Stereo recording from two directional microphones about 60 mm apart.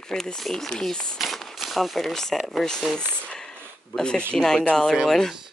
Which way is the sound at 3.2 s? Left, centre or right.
Centre.